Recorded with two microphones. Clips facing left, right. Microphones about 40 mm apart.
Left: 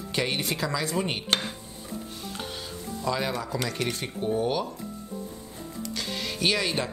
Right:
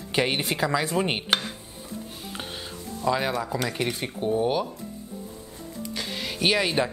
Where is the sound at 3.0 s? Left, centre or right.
Centre.